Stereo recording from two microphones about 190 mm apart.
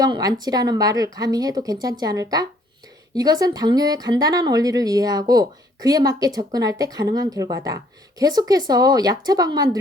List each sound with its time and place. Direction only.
0.0 s a woman's voice: 20° right (ahead or behind)